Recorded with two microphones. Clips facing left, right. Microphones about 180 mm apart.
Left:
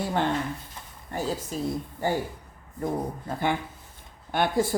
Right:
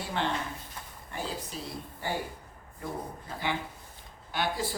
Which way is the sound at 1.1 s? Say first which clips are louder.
Left 7 dB; 45° left (ahead or behind).